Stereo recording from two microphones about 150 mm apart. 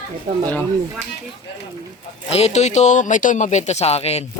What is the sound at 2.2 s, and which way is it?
Speech, 45° left (ahead or behind).